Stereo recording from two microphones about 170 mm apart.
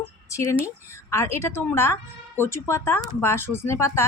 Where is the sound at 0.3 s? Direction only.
20° left (ahead or behind).